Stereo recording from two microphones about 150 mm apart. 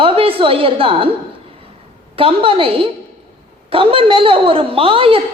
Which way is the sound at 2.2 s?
40° right (ahead or behind).